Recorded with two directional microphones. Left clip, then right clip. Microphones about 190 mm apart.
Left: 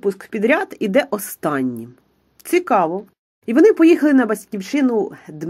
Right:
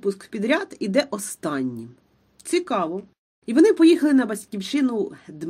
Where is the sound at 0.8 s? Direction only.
15° left (ahead or behind).